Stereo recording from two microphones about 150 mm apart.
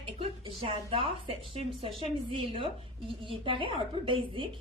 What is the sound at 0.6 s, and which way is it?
Speech, 40° right (ahead or behind).